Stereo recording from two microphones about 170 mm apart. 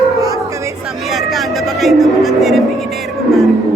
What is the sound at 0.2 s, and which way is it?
Music, 20° right (ahead or behind).